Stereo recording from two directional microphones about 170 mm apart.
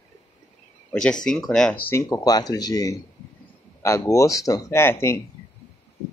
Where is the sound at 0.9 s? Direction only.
5° left (ahead or behind).